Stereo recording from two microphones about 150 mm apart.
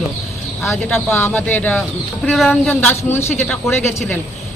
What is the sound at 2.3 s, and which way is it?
Speech, centre (ahead or behind).